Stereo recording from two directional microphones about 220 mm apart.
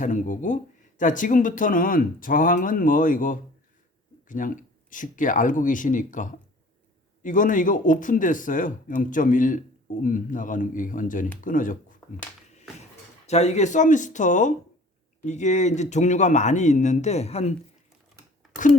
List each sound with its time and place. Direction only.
0.0 s speech: 35° left (ahead or behind)
13.2 s speech: 30° left (ahead or behind)